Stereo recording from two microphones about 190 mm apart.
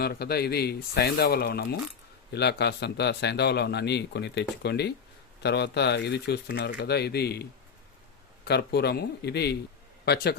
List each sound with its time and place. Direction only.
0.0 s a man's voice: 55° left (ahead or behind)
8.4 s a man's voice: 60° left (ahead or behind)